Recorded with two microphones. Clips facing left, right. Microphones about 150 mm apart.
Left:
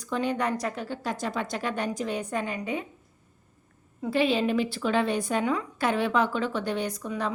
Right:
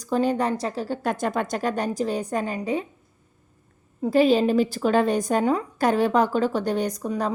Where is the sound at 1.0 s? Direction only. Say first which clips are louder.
Right 5 dB; 50° right (ahead or behind); by 2.8 s 35° right (ahead or behind).